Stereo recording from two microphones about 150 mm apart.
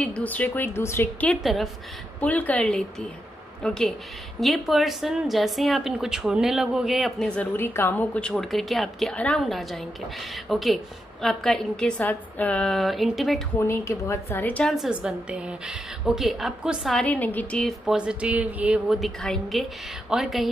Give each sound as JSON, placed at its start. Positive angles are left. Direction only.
{"t": 0.0, "sound": "a woman's voice", "side_deg": 10}
{"t": 1.3, "sound": "a woman's voice", "side_deg": 0}
{"t": 2.1, "sound": "a woman's voice", "side_deg": 10}
{"t": 13.6, "sound": "a woman's voice", "side_deg": 20}
{"t": 14.7, "sound": "a woman's voice", "side_deg": -5}